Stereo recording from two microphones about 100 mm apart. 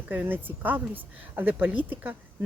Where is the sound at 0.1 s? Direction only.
20° right (ahead or behind).